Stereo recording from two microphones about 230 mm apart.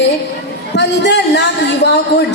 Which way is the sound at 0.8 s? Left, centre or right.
Left.